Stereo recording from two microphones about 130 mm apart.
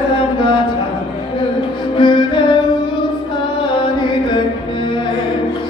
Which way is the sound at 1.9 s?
35° left (ahead or behind).